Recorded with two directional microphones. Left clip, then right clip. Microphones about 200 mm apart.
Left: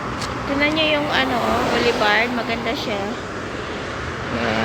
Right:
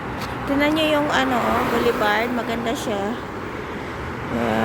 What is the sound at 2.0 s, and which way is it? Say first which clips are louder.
Speech: left 2 dB; 15° right (ahead or behind).